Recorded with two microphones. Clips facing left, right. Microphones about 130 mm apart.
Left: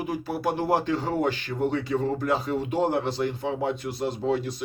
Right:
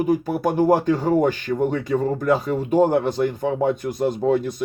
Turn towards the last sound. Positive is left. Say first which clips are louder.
# right 6 dB
turn(degrees=-50)  # may be behind; listen again after turning